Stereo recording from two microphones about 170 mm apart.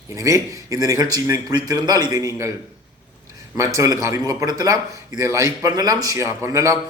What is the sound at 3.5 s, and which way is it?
A man's voice, 20° right (ahead or behind).